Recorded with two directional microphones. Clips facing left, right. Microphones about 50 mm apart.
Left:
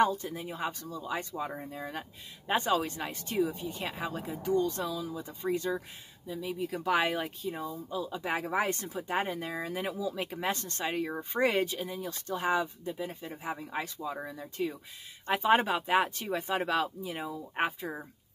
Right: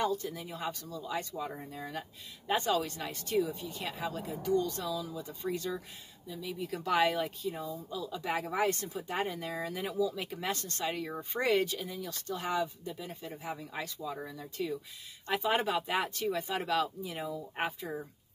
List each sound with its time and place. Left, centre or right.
0.0 s speech: left